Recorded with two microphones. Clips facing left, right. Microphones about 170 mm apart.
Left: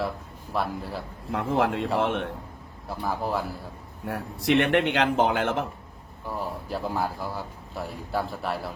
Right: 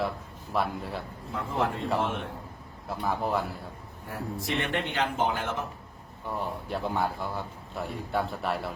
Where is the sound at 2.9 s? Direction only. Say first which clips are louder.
Even; centre (ahead or behind).